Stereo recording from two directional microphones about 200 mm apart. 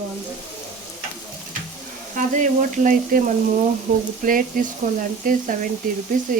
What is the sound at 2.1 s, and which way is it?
Frying, 40° right (ahead or behind).